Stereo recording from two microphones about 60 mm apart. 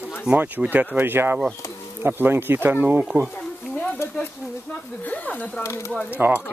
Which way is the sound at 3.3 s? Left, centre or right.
Left.